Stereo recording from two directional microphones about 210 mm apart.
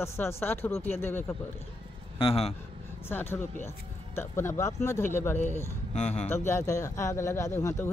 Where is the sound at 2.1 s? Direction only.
25° left (ahead or behind).